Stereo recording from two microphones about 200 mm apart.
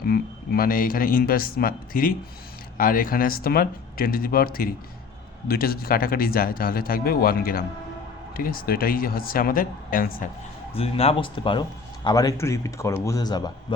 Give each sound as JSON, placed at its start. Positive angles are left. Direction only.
{"t": 0.0, "sound": "speech", "side_deg": 50}
{"t": 10.8, "sound": "a man's voice", "side_deg": 30}